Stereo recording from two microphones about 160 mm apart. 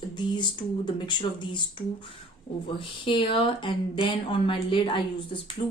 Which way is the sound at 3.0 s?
30° left (ahead or behind).